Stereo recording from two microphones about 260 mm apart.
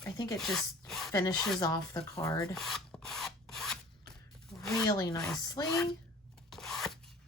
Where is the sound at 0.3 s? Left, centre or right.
Centre.